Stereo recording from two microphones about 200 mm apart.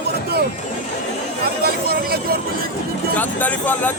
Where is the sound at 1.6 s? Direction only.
50° right (ahead or behind).